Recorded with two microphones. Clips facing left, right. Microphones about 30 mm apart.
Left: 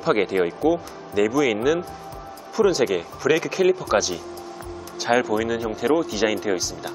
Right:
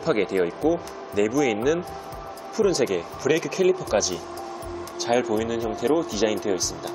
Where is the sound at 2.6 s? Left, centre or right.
Centre.